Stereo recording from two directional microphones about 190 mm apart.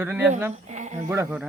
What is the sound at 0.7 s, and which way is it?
Speech, 40° right (ahead or behind).